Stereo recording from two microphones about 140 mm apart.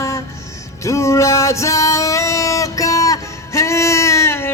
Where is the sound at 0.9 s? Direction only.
20° left (ahead or behind).